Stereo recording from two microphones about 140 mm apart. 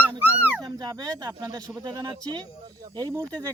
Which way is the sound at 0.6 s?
30° right (ahead or behind).